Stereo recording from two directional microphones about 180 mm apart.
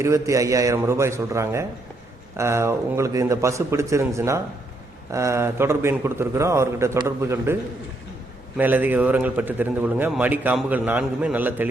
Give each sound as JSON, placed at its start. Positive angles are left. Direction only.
{"t": 0.0, "sound": "a man's voice", "side_deg": -15}
{"t": 8.5, "sound": "a man's voice", "side_deg": -10}